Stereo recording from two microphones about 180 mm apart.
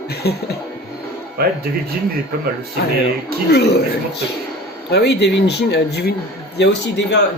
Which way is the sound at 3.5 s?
65° left (ahead or behind).